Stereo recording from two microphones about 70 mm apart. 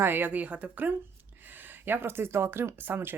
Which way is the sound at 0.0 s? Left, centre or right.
Right.